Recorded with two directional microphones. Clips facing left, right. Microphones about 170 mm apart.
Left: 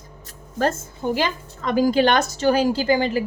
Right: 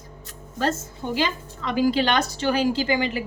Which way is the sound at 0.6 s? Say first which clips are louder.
Left 3 dB; 50° left (ahead or behind).